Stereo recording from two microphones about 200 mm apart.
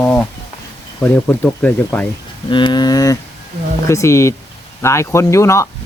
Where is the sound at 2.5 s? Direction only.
25° left (ahead or behind).